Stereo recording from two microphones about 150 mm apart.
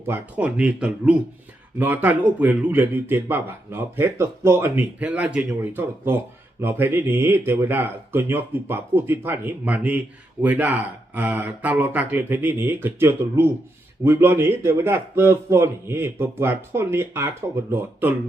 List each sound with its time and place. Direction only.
0.0 s speech: 10° right (ahead or behind)